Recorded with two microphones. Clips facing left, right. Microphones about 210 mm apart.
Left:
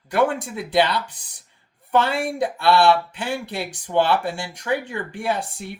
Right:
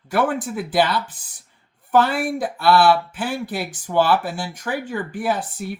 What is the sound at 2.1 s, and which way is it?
Speech, 25° left (ahead or behind).